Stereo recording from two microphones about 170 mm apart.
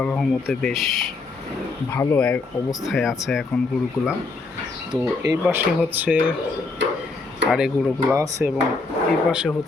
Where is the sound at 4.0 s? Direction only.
20° left (ahead or behind).